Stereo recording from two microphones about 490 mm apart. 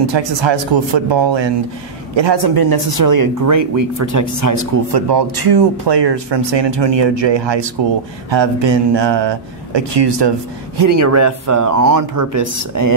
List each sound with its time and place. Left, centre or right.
0.0 s speech: right
10.8 s speech: right